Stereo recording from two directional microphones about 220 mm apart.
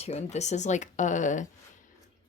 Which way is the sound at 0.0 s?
30° left (ahead or behind).